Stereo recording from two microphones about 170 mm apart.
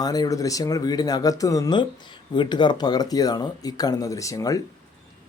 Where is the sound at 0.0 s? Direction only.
20° left (ahead or behind).